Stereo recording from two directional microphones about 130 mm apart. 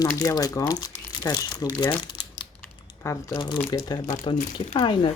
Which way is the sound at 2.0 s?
35° left (ahead or behind).